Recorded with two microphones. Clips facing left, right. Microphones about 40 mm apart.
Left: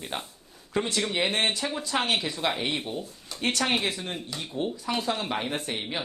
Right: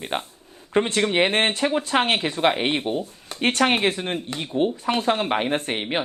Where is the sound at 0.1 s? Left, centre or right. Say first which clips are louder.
Right 7 dB; right.